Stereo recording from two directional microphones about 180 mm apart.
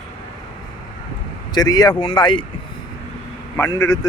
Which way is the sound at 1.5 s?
20° left (ahead or behind).